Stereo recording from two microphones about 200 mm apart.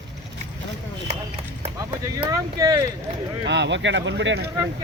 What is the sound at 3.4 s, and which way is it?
Speech, 60° right (ahead or behind).